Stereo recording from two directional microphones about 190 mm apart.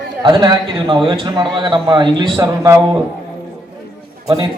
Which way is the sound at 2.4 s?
15° right (ahead or behind).